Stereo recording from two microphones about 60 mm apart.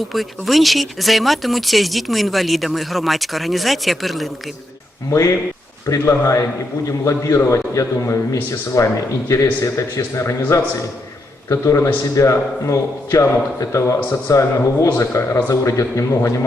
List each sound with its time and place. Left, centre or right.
0.0 s speech: centre
5.1 s a man's voice: left
8.8 s speech: left
9.3 s a man's voice: left
11.4 s a man's voice: left